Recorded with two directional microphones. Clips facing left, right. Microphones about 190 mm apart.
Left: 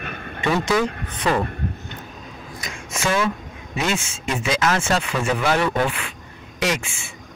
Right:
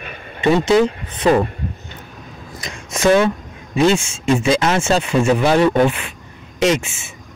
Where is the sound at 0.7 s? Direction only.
25° right (ahead or behind).